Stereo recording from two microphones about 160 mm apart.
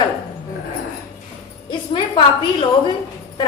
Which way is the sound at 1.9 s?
35° left (ahead or behind).